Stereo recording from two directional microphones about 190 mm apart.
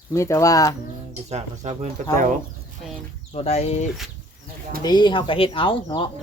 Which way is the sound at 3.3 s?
35° left (ahead or behind).